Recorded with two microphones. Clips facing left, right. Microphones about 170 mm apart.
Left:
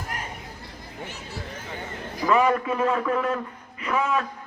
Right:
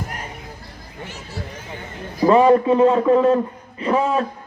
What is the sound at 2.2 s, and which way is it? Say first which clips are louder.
A man's voice: right 8 dB; 30° right (ahead or behind).